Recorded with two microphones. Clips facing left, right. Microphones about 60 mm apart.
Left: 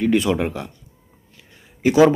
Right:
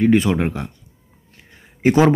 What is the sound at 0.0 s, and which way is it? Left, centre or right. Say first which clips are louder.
Speech: right 3 dB; right.